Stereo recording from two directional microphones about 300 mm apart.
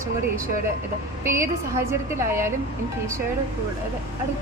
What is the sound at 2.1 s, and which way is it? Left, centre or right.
Speech, centre.